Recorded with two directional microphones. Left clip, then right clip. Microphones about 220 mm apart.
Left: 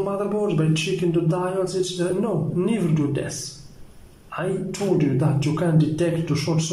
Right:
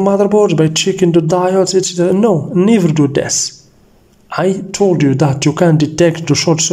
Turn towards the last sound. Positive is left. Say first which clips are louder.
# right 12 dB
turn(degrees=-40)  # may be behind; listen again after turning